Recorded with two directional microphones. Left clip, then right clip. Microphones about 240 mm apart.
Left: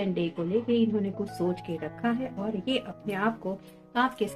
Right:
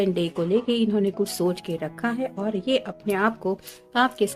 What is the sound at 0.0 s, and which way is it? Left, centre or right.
A woman's voice, right.